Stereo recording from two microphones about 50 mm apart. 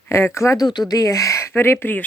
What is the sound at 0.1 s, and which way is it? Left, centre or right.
Speech, left.